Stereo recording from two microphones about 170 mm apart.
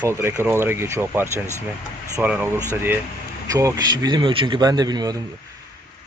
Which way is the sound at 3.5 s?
20° right (ahead or behind).